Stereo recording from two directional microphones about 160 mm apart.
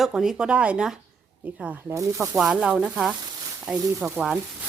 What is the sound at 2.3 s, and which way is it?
Speech, 5° right (ahead or behind).